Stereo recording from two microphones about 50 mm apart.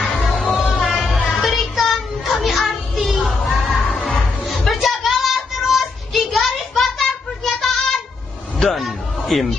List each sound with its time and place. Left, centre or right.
0.0 s music: centre
4.5 s child singing: centre
8.5 s a sound: centre